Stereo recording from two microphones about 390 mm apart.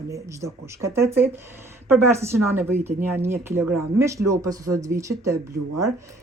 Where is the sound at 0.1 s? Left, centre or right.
Centre.